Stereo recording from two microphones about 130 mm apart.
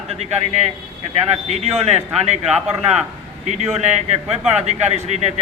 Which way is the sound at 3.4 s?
60° right (ahead or behind).